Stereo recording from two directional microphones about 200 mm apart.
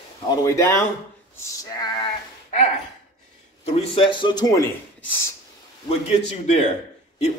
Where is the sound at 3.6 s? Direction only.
30° left (ahead or behind).